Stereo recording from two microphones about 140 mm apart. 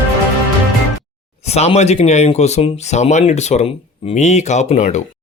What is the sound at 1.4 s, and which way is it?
Speech, 50° left (ahead or behind).